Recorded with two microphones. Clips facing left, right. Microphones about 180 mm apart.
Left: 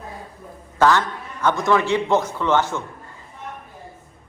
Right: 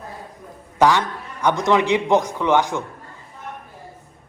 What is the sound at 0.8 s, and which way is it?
A man's voice, 15° right (ahead or behind).